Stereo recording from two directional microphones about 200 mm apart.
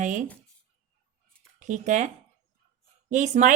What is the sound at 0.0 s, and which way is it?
Speech, 40° right (ahead or behind).